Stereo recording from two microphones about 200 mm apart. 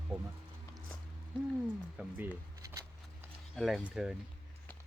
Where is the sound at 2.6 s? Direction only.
15° right (ahead or behind).